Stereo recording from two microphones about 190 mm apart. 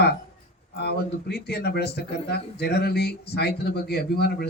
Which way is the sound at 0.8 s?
60° left (ahead or behind).